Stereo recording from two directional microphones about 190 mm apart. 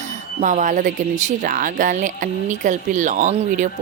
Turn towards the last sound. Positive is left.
turn(degrees=-40)  # may be behind; listen again after turning